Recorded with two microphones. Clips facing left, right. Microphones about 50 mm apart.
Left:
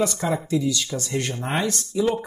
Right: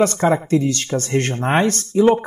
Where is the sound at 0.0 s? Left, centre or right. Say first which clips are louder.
Right 7 dB; right.